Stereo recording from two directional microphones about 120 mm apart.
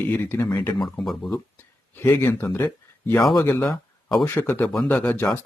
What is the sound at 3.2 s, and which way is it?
Speech, 35° left (ahead or behind).